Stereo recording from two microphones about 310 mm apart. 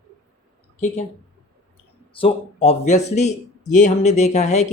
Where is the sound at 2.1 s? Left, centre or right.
Centre.